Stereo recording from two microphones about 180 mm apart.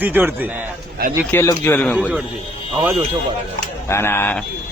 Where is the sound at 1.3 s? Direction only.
15° left (ahead or behind).